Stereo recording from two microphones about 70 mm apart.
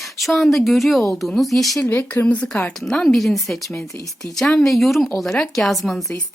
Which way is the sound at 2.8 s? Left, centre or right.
Centre.